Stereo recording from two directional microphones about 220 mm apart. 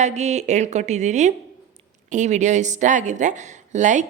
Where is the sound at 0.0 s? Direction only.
30° right (ahead or behind).